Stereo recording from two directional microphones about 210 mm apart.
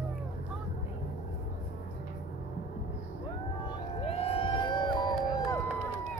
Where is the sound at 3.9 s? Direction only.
30° left (ahead or behind).